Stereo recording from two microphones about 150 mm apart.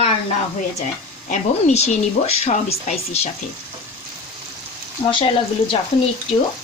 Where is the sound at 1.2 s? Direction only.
50° left (ahead or behind).